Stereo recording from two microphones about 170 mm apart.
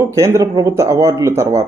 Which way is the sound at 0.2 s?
20° right (ahead or behind).